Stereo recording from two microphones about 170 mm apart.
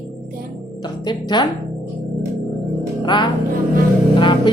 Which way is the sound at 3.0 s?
25° left (ahead or behind).